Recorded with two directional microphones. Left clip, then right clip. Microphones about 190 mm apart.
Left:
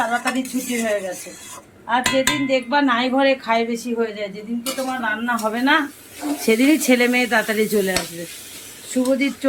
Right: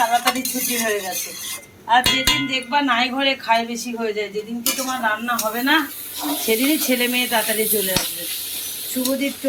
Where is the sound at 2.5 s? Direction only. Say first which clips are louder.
Left 1 dB; 60° left (ahead or behind).